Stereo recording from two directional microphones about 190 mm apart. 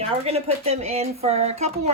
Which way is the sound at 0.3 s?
30° right (ahead or behind).